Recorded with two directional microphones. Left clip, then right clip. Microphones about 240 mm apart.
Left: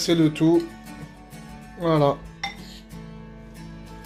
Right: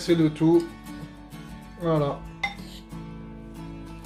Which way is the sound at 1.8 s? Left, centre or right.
Left.